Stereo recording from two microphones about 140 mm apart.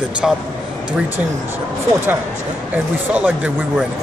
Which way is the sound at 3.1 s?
10° right (ahead or behind).